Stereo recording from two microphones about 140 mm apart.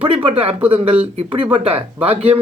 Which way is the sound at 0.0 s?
35° right (ahead or behind).